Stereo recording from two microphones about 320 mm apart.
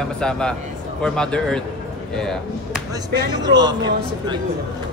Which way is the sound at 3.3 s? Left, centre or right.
Centre.